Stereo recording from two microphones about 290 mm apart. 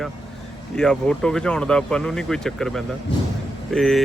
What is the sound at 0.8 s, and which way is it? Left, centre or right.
Speech, centre.